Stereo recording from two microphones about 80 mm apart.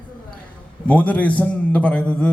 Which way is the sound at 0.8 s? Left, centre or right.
Centre.